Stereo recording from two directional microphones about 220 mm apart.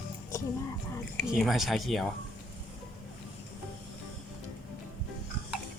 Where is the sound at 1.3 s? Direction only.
Centre (ahead or behind).